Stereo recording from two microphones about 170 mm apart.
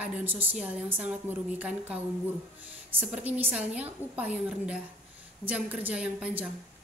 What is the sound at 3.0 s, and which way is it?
A woman's voice, 10° right (ahead or behind).